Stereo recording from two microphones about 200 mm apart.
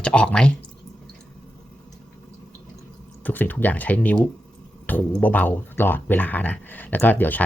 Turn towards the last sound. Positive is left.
turn(degrees=10)  # may be behind; listen again after turning